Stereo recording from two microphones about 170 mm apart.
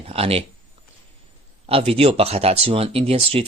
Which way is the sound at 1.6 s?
35° right (ahead or behind).